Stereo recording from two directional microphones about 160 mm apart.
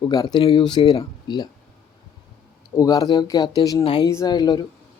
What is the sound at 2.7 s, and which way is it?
Speech, 20° left (ahead or behind).